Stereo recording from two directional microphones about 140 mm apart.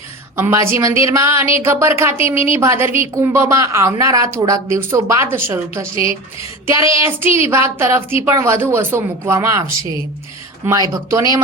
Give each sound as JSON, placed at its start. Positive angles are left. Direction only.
{"t": 0.3, "sound": "a woman's voice", "side_deg": -20}
{"t": 7.3, "sound": "a woman's voice", "side_deg": 45}
{"t": 7.5, "sound": "a woman's voice", "side_deg": -20}